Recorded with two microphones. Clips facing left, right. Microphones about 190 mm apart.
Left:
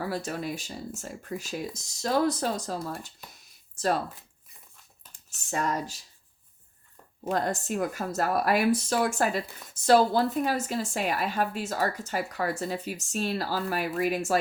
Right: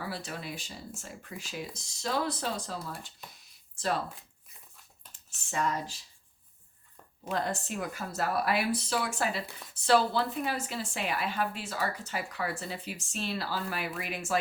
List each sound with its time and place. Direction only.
0.0 s speech: 45° left (ahead or behind)
5.3 s speech: 40° left (ahead or behind)
7.3 s speech: 45° left (ahead or behind)